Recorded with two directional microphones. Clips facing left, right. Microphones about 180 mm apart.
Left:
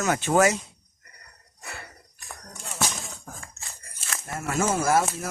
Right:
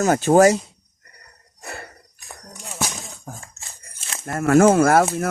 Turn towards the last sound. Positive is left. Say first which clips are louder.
# right 7 dB
turn(degrees=-65)  # may be behind; listen again after turning